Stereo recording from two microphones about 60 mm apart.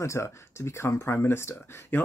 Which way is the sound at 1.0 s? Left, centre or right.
Left.